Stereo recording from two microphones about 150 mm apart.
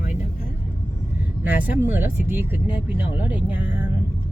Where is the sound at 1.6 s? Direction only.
15° right (ahead or behind).